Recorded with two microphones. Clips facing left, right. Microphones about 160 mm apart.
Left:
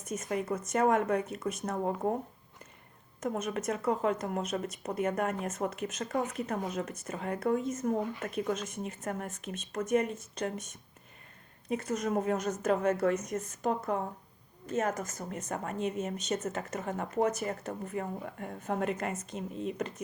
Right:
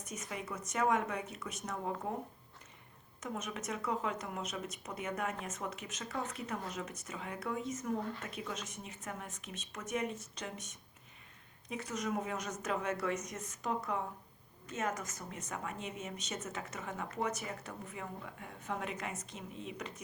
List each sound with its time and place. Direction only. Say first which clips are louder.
0.1 s speech: left 10 dB; 50° left (ahead or behind)
3.2 s speech: left 8 dB; 50° left (ahead or behind)
11.7 s speech: left 7 dB; 55° left (ahead or behind)